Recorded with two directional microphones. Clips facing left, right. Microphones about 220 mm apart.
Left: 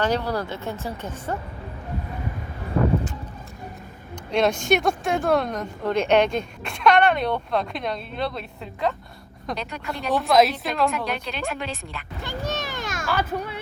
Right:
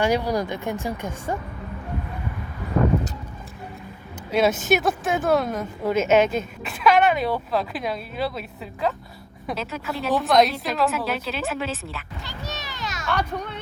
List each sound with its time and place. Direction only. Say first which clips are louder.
0.0 s speech: right 2 dB; 10° right (ahead or behind)
4.3 s a woman's voice: right 1 dB; 5° right (ahead or behind)
12.2 s a sound: left 9 dB; 50° left (ahead or behind)
13.1 s speech: even; 5° left (ahead or behind)